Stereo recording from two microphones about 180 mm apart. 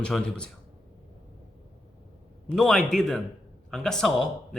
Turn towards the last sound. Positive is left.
turn(degrees=0)  # may be behind; listen again after turning